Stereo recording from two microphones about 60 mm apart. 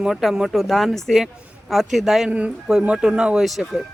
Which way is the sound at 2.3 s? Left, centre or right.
Centre.